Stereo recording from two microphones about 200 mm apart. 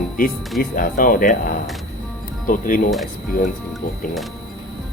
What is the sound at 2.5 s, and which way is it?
Speech, 40° left (ahead or behind).